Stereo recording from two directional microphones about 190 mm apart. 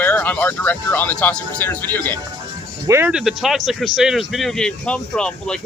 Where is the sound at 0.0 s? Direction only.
10° left (ahead or behind).